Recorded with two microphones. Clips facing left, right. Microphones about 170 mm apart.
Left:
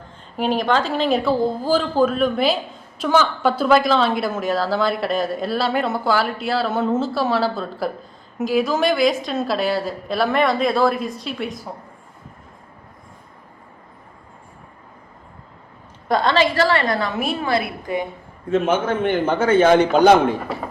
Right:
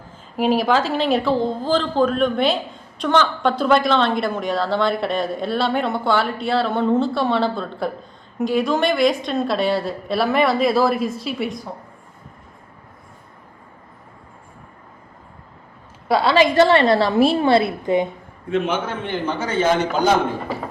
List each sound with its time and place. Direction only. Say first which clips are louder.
0.3 s a woman's voice: right 2 dB; 5° right (ahead or behind)
16.0 s a woman's voice: right 2 dB; 5° right (ahead or behind); by 18.1 s 20° right (ahead or behind)
18.5 s a man's voice: left 3 dB; 45° left (ahead or behind); by 20.1 s 60° left (ahead or behind)